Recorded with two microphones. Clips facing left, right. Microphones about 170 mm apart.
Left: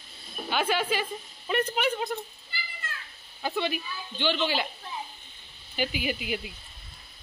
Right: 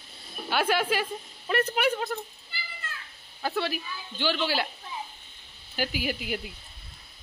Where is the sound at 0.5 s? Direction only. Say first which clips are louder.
Right 1 dB; 10° right (ahead or behind).